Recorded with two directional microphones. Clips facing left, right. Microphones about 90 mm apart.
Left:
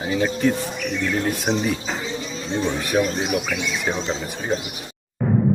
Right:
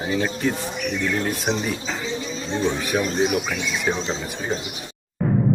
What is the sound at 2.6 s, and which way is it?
Speech, centre (ahead or behind).